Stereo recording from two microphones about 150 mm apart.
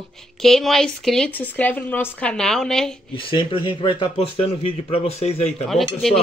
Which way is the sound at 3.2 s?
35° left (ahead or behind).